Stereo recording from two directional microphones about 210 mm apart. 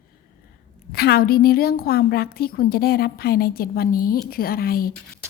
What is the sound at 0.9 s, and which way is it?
A woman's voice, 45° left (ahead or behind).